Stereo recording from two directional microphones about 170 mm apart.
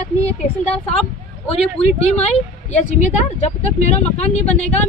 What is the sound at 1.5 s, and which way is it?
Speech, 35° left (ahead or behind).